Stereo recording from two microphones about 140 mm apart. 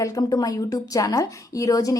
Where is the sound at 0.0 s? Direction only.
25° left (ahead or behind).